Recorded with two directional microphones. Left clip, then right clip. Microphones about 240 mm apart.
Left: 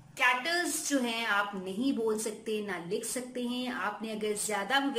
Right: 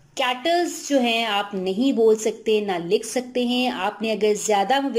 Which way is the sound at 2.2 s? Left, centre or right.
Centre.